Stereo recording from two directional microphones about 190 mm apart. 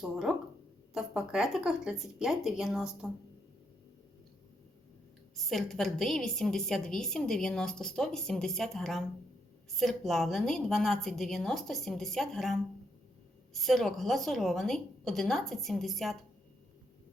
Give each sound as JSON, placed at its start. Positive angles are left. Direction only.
{"t": 0.0, "sound": "a woman's voice", "side_deg": 0}
{"t": 5.5, "sound": "a woman's voice", "side_deg": 0}